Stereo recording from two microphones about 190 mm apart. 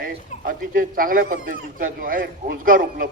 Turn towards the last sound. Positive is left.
turn(degrees=-45)  # may be behind; listen again after turning